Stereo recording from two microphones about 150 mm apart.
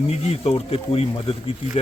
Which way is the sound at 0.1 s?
40° left (ahead or behind).